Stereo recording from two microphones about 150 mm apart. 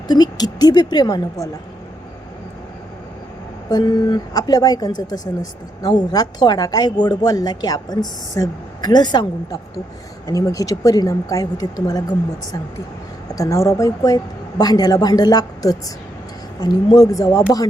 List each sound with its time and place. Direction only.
0.1 s a woman's voice: 25° left (ahead or behind)
3.7 s a woman's voice: 25° left (ahead or behind)
13.3 s a woman's voice: 20° left (ahead or behind)